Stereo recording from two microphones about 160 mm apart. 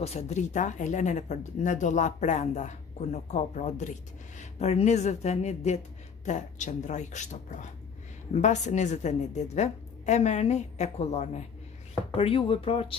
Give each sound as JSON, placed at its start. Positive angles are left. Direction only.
{"t": 0.0, "sound": "speech", "side_deg": 45}